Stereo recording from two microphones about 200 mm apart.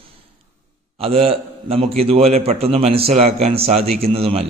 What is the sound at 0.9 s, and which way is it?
A man's voice, 30° right (ahead or behind).